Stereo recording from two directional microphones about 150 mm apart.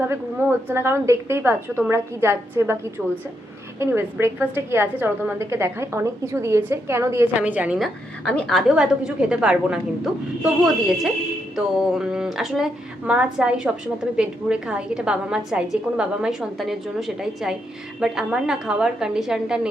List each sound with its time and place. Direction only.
0.7 s a woman's voice: 15° right (ahead or behind)
3.8 s a woman's voice: 15° right (ahead or behind)
8.2 s speech: 5° left (ahead or behind)